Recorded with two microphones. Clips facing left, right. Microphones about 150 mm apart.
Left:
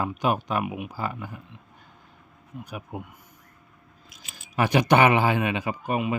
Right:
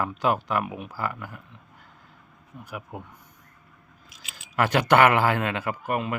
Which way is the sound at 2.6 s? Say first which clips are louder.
Even; 15° left (ahead or behind).